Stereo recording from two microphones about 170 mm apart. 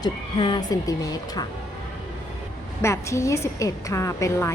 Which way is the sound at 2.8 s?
15° left (ahead or behind).